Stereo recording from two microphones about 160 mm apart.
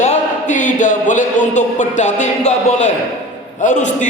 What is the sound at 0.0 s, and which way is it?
A man's voice, 50° left (ahead or behind).